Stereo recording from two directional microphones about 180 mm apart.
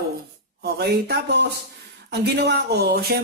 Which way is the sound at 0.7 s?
60° right (ahead or behind).